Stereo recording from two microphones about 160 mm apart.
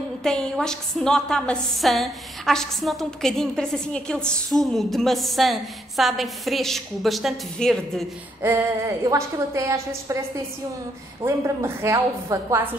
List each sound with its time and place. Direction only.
0.2 s a woman's voice: 5° left (ahead or behind)
8.4 s a woman's voice: 15° right (ahead or behind)
11.2 s a woman's voice: 15° right (ahead or behind)